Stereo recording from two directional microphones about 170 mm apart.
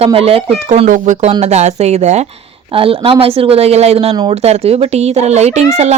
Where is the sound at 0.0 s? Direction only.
35° right (ahead or behind).